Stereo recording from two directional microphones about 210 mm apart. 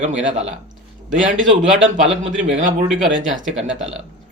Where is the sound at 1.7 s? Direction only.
35° right (ahead or behind).